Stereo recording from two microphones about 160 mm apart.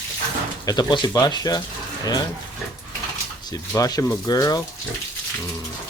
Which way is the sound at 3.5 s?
20° left (ahead or behind).